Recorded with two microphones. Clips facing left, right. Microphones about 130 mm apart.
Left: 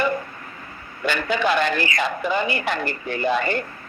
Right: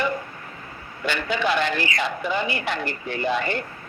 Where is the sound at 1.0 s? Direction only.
45° left (ahead or behind).